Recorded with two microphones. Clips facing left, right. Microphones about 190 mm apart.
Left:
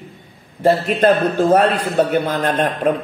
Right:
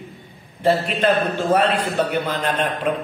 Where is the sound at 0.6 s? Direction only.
50° left (ahead or behind).